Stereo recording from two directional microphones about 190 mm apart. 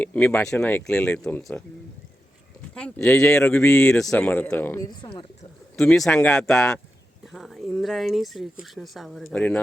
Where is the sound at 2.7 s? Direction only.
5° left (ahead or behind).